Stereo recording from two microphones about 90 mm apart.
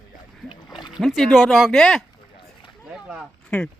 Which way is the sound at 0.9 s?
Centre (ahead or behind).